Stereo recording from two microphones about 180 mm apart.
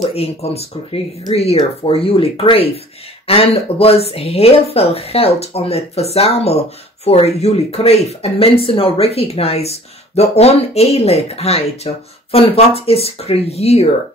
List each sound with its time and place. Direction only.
0.1 s speech: 35° left (ahead or behind)